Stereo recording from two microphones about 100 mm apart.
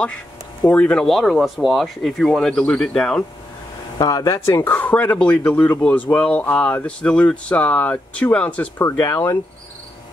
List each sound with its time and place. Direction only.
0.7 s speech: 10° left (ahead or behind)
4.0 s speech: 35° left (ahead or behind); by 8.6 s 10° left (ahead or behind)
8.7 s speech: 25° left (ahead or behind)